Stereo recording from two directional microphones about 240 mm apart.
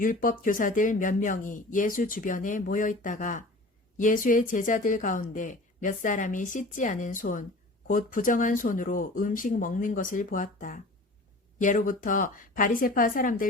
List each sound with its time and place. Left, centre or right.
0.0 s speech: left